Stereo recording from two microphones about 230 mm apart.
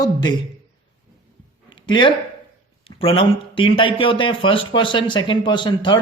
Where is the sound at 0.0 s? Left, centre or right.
Centre.